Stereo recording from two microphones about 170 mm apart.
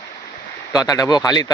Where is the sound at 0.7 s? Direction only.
20° left (ahead or behind).